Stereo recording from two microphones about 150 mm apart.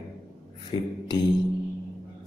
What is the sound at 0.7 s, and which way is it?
Speech, 30° left (ahead or behind).